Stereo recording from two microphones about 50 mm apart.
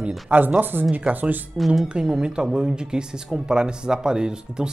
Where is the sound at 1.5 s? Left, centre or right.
Centre.